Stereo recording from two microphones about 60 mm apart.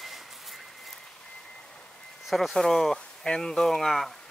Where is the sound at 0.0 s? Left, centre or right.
Centre.